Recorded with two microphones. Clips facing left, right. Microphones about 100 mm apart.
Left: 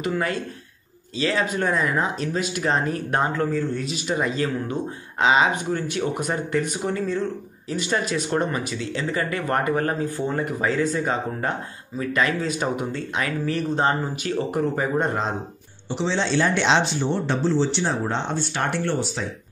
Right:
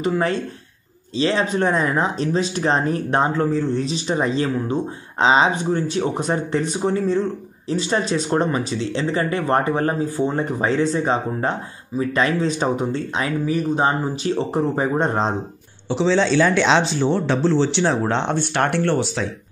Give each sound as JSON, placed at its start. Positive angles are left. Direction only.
{"t": 0.0, "sound": "speech", "side_deg": -25}
{"t": 13.5, "sound": "speech", "side_deg": -15}
{"t": 14.2, "sound": "speech", "side_deg": -25}
{"t": 15.9, "sound": "speech", "side_deg": -90}
{"t": 17.3, "sound": "speech", "side_deg": -90}